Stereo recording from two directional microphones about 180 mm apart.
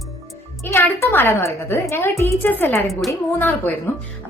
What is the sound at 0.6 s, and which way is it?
A woman's voice, 15° left (ahead or behind).